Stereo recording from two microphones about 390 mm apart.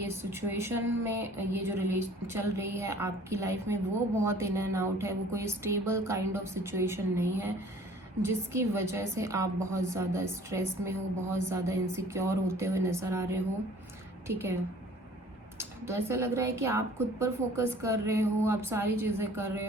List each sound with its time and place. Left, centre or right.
0.0 s a woman's voice: centre
15.5 s a woman's voice: centre